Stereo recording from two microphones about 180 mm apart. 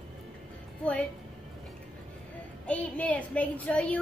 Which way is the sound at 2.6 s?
10° left (ahead or behind).